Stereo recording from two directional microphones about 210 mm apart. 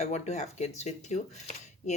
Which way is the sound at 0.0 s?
35° left (ahead or behind).